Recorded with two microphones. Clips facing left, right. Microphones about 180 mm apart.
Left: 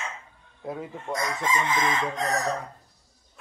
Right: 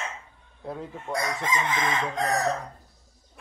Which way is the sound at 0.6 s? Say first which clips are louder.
Left 1 dB; 10° left (ahead or behind).